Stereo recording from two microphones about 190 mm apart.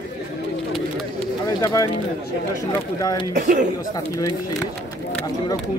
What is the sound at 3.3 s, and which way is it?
Speech, 40° right (ahead or behind).